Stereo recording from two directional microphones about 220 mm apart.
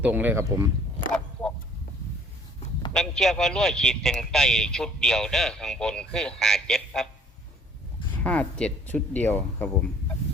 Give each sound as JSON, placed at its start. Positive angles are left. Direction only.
{"t": 0.0, "sound": "speech", "side_deg": -10}
{"t": 1.1, "sound": "a sound", "side_deg": 5}
{"t": 2.9, "sound": "speech", "side_deg": 0}
{"t": 8.2, "sound": "speech", "side_deg": 5}